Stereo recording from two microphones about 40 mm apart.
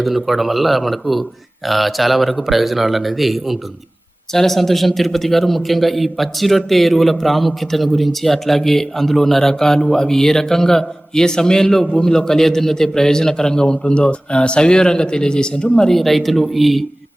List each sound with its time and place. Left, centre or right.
0.3 s a man's voice: centre
4.3 s a man's voice: centre
15.9 s a man's voice: centre